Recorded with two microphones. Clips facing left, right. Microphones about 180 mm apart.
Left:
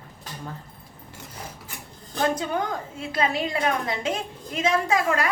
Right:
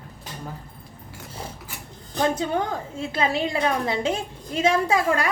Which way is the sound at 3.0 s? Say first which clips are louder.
Right 1 dB; 25° right (ahead or behind).